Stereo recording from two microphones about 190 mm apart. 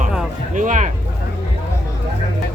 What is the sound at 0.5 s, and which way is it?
Speech, 40° right (ahead or behind).